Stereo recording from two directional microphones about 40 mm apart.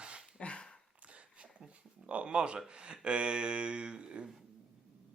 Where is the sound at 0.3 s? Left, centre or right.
Left.